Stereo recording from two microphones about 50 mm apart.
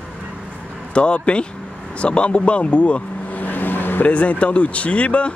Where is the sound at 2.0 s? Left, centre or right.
Left.